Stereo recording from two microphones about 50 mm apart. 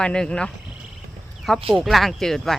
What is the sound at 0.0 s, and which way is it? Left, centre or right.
Speech, centre.